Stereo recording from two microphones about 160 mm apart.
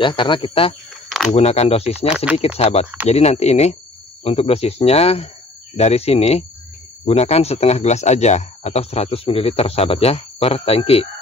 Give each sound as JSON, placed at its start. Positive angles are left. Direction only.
{"t": 0.0, "sound": "speech", "side_deg": 30}